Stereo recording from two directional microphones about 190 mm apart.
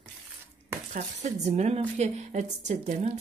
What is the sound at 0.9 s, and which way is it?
Speech, 40° right (ahead or behind).